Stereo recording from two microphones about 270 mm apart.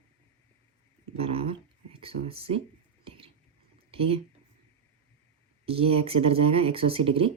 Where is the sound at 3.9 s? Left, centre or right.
Right.